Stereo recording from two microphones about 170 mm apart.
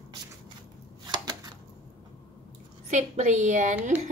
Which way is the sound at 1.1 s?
20° right (ahead or behind).